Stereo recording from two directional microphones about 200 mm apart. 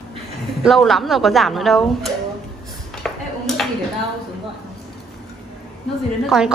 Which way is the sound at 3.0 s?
Centre (ahead or behind).